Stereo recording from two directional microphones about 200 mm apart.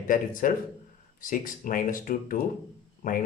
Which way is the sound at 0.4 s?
45° left (ahead or behind).